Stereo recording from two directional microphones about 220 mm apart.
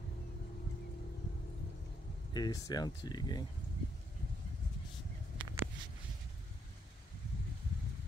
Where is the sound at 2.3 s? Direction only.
20° left (ahead or behind).